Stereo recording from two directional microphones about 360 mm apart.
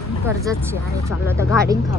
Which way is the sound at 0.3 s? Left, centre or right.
Centre.